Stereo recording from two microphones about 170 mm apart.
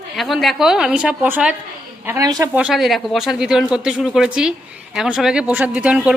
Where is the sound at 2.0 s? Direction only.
20° right (ahead or behind).